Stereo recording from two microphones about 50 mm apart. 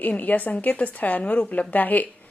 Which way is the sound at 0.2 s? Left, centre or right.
Left.